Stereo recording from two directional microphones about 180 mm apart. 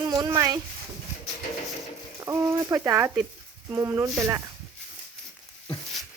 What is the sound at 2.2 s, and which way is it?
Speech, 15° right (ahead or behind).